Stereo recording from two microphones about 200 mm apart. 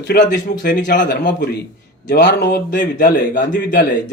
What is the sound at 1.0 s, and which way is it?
A man's voice, 60° left (ahead or behind).